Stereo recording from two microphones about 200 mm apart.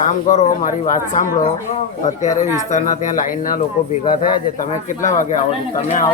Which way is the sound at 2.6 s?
35° left (ahead or behind).